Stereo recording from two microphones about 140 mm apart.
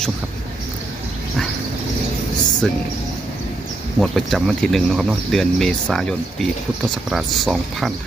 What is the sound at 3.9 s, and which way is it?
Speech, centre (ahead or behind).